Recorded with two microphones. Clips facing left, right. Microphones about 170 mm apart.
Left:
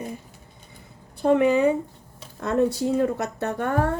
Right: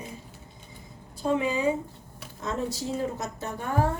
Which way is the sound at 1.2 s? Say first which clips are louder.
Left 8 dB; 60° left (ahead or behind).